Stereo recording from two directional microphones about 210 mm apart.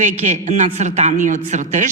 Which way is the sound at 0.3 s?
35° right (ahead or behind).